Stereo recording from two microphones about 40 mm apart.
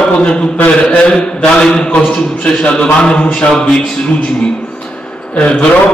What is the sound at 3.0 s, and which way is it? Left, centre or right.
Speech, left.